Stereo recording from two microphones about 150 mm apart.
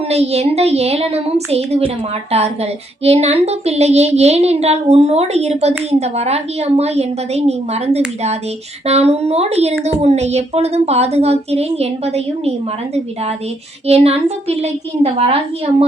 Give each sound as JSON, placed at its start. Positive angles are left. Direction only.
{"t": 0.1, "sound": "a woman's voice", "side_deg": -45}